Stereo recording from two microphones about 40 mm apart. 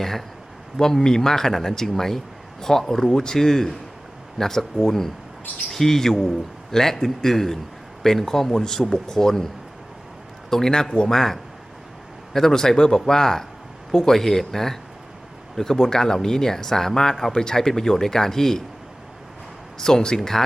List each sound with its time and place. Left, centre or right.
0.0 s speech: centre
10.5 s speech: centre
19.8 s speech: centre